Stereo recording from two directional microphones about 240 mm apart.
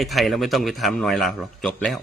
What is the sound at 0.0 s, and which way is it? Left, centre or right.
A man's voice, centre.